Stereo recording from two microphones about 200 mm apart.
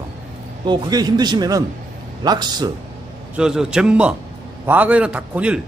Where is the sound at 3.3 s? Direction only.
5° right (ahead or behind).